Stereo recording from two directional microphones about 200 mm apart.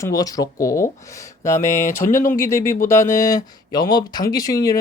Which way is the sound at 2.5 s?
15° left (ahead or behind).